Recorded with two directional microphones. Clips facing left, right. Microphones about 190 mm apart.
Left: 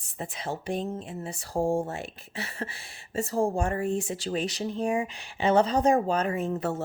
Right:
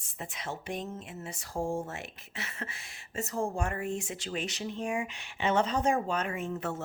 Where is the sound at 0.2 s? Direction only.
35° left (ahead or behind).